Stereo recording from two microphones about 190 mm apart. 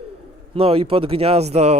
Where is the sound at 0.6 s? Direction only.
30° right (ahead or behind).